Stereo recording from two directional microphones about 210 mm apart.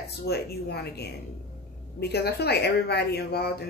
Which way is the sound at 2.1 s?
50° left (ahead or behind).